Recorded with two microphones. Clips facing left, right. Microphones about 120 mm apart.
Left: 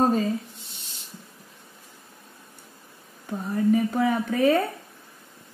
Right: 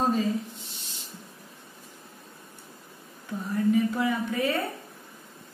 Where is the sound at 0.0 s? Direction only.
45° left (ahead or behind).